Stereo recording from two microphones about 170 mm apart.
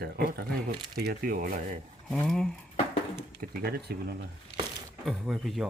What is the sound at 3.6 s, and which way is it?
Speech, 70° right (ahead or behind).